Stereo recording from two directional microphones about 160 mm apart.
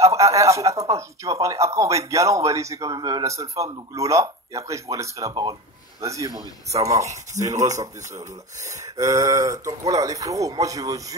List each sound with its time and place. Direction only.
0.0 s speech: 20° right (ahead or behind)
7.1 s speech: 45° right (ahead or behind)
7.7 s speech: 20° right (ahead or behind)